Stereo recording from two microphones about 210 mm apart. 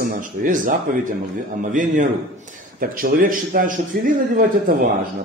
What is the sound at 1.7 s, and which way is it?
Speech, 40° right (ahead or behind).